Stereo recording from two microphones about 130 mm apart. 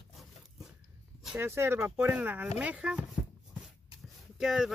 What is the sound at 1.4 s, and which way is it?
Speech, 20° right (ahead or behind).